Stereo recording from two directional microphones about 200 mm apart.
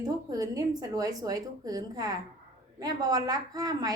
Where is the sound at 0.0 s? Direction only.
15° right (ahead or behind).